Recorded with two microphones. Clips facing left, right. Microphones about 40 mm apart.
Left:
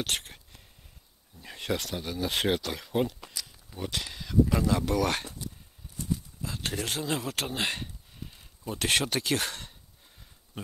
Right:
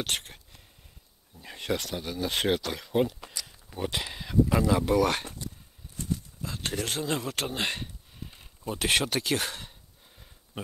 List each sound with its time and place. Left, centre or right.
0.0 s speech: centre
3.4 s speech: centre
6.4 s speech: centre